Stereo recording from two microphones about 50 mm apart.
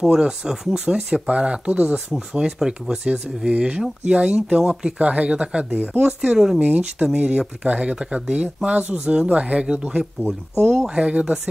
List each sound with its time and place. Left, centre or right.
0.0 s speech: centre
1.3 s speech: right
2.1 s speech: centre
6.6 s speech: right